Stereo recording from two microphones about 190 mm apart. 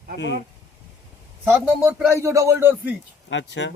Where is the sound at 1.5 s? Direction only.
10° right (ahead or behind).